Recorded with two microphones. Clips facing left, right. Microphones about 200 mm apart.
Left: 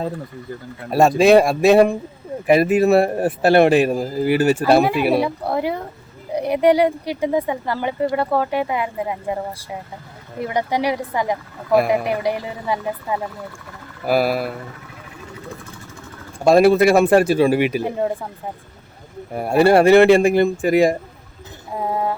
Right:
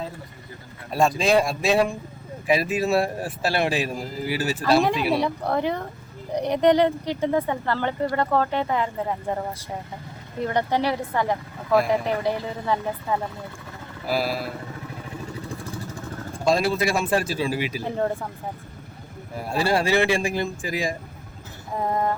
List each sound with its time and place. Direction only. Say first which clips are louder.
0.9 s a man's voice: left 8 dB; 65° left (ahead or behind)
5.2 s speech: left 2 dB; 10° left (ahead or behind)
14.1 s a man's voice: left 7 dB; 60° left (ahead or behind)
16.4 s a man's voice: left 9 dB; 60° left (ahead or behind)
19.3 s a man's voice: left 9 dB; 60° left (ahead or behind)
21.8 s speech: left 2 dB; 10° left (ahead or behind)